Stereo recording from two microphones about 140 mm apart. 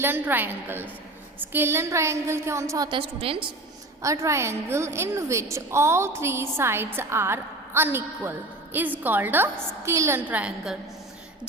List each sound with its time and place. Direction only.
0.0 s a woman's voice: 15° right (ahead or behind)
3.0 s a woman's voice: 40° right (ahead or behind)
4.0 s a woman's voice: 20° right (ahead or behind)